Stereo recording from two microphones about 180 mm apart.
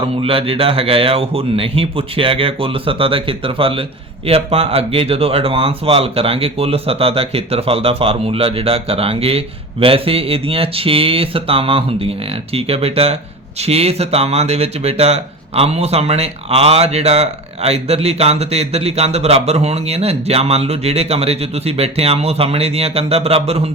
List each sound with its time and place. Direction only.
0.2 s speech: 30° right (ahead or behind)